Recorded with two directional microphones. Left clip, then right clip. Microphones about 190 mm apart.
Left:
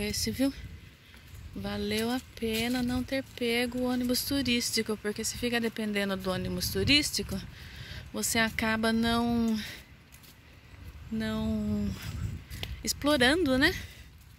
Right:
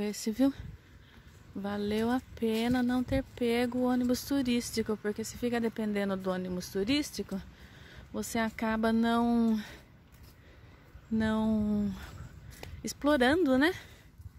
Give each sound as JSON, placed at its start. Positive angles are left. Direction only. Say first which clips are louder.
{"t": 0.0, "sound": "speech", "louder": "even", "side_deg": -15}
{"t": 1.6, "sound": "speech", "louder": "even", "side_deg": -10}
{"t": 11.1, "sound": "speech", "louder": "right 3 dB", "side_deg": -20}